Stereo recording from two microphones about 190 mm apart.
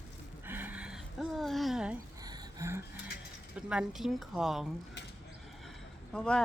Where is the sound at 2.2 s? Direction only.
20° right (ahead or behind).